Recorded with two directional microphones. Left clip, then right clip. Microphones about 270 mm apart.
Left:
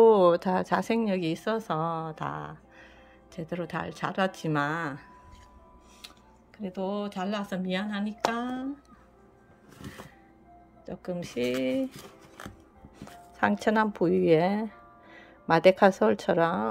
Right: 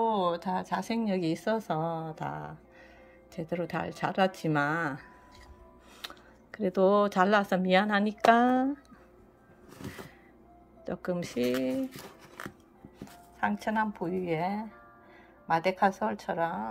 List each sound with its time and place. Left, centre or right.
0.0 s speech: centre
5.9 s speech: centre
10.9 s speech: centre
13.0 s speech: left